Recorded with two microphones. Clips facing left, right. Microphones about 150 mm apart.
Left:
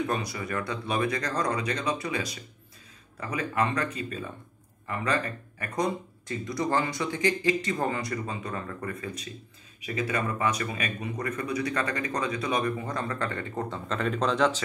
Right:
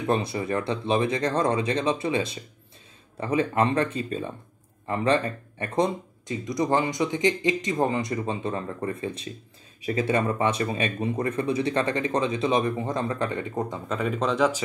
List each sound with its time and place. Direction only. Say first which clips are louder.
0.1 s speech: right 6 dB; 25° right (ahead or behind); by 14.6 s 5° right (ahead or behind)